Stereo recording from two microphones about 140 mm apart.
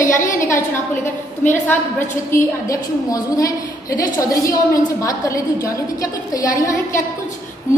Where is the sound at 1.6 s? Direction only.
15° left (ahead or behind).